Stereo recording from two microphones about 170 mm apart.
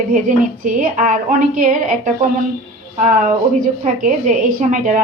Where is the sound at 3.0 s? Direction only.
50° right (ahead or behind).